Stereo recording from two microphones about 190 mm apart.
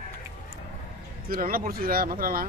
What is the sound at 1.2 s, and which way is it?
Speech, 50° right (ahead or behind).